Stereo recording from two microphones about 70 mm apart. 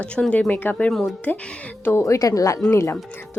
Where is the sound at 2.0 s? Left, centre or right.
Left.